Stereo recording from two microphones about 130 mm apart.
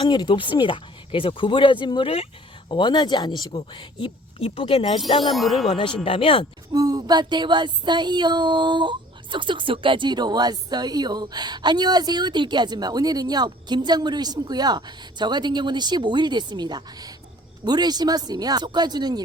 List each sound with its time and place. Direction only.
0.0 s speech: 35° left (ahead or behind)
5.3 s wind chime: centre (ahead or behind)
6.1 s speech: 45° left (ahead or behind)
6.7 s speech: 30° right (ahead or behind)